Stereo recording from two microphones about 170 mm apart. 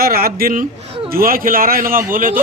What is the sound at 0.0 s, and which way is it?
Speech, 60° right (ahead or behind).